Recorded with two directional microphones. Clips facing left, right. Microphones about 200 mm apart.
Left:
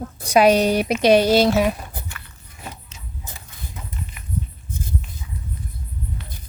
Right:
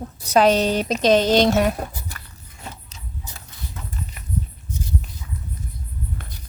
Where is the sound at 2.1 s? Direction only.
35° right (ahead or behind).